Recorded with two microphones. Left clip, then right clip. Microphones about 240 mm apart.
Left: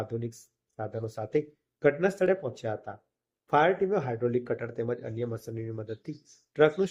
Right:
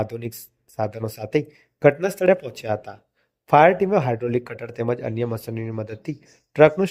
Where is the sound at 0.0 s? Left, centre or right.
Right.